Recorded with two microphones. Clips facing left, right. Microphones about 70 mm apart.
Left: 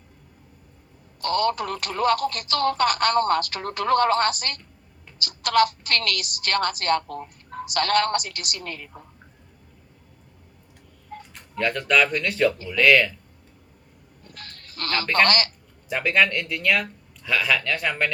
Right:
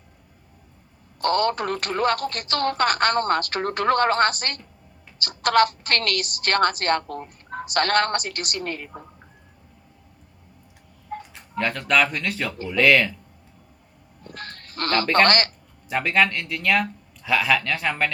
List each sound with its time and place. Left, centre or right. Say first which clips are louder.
1.2 s speech: right 2 dB; right
11.5 s speech: even; centre
14.3 s a sound: right 7 dB; right
15.3 s speech: right 2 dB; right
15.9 s speech: even; centre